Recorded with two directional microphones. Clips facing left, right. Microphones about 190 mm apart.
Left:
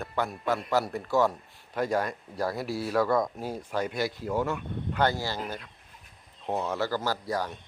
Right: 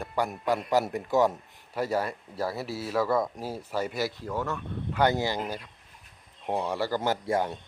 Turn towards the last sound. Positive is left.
turn(degrees=-25)  # may be behind; listen again after turning